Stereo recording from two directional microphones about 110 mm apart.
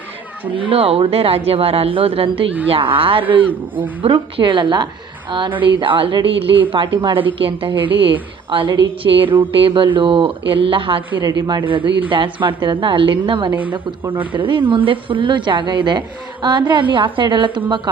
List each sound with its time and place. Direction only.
0.7 s a woman's voice: 60° right (ahead or behind)
11.2 s a woman's voice: 40° right (ahead or behind)